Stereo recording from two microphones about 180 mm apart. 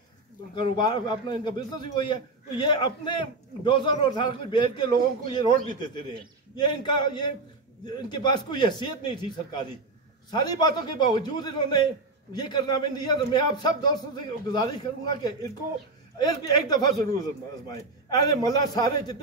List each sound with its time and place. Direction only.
0.6 s a man's voice: 25° left (ahead or behind)